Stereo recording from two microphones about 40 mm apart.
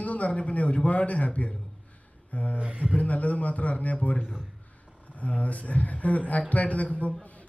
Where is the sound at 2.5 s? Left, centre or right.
Right.